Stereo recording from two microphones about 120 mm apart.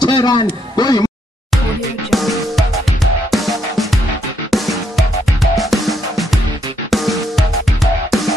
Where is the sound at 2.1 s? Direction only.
Centre (ahead or behind).